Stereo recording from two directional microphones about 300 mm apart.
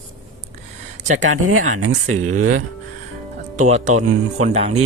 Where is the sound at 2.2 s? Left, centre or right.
Right.